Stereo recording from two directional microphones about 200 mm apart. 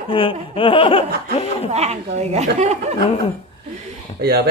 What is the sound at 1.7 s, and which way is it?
A woman's voice, 35° right (ahead or behind).